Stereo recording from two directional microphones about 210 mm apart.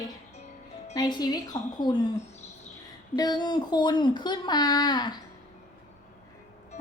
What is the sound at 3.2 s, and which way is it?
Speech, 20° left (ahead or behind).